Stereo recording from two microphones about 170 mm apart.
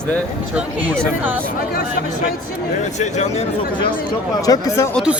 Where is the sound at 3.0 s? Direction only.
40° left (ahead or behind).